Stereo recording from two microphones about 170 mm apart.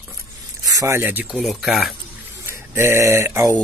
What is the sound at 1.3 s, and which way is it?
Speech, centre (ahead or behind).